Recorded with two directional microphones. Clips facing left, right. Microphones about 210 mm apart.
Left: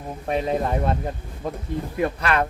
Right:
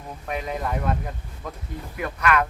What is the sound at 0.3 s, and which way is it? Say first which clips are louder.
Speech: left 6 dB; 30° left (ahead or behind).